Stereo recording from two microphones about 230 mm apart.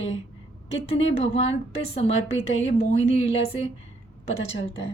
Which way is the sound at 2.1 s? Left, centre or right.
Left.